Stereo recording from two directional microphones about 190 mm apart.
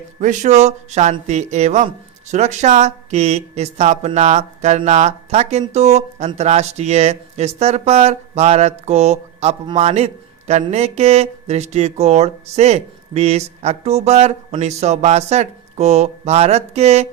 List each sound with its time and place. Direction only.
0.2 s speech: 40° right (ahead or behind)